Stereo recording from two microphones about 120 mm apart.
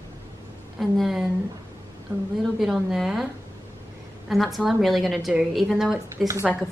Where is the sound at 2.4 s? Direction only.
Centre (ahead or behind).